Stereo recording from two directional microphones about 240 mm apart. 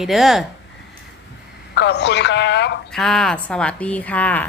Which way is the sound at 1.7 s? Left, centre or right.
Left.